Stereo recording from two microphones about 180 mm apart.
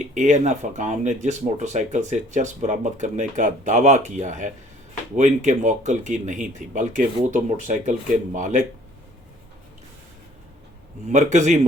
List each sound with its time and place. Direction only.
0.1 s speech: 40° right (ahead or behind)
11.1 s speech: 40° right (ahead or behind)